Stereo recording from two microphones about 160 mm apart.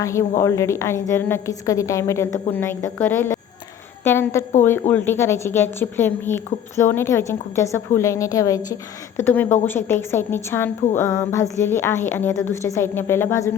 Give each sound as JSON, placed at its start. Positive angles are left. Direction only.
{"t": 0.0, "sound": "a woman's voice", "side_deg": 20}